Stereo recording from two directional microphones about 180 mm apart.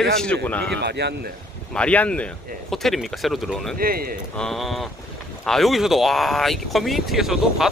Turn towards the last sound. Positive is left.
turn(degrees=0)  # may be behind; listen again after turning